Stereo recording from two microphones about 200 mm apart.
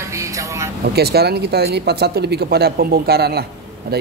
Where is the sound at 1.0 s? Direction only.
55° right (ahead or behind).